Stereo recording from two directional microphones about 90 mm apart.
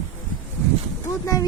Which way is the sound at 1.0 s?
40° left (ahead or behind).